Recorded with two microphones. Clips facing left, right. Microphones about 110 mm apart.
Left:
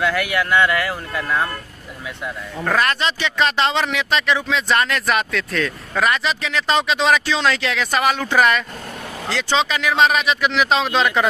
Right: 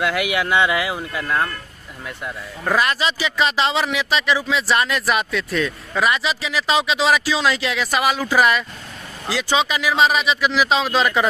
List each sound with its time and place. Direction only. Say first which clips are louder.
0.0 s speech: left 1 dB; 15° right (ahead or behind)
1.1 s a man's voice: left 1 dB; centre (ahead or behind)